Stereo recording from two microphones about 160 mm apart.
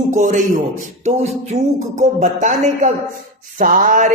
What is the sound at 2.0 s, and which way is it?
Speech, 50° right (ahead or behind).